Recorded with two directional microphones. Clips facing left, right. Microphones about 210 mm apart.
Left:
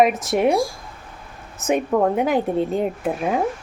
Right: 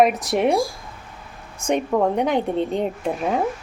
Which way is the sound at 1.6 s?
5° left (ahead or behind).